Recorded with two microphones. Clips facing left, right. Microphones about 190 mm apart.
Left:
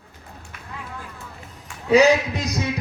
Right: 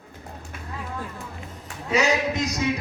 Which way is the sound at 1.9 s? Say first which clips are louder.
Left 7 dB; 35° left (ahead or behind).